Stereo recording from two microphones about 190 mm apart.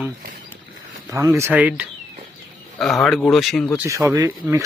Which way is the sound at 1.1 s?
15° right (ahead or behind).